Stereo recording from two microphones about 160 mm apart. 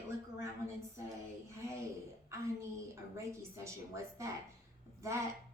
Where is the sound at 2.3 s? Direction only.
20° right (ahead or behind).